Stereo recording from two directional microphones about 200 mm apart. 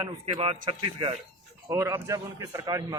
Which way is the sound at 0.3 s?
30° right (ahead or behind).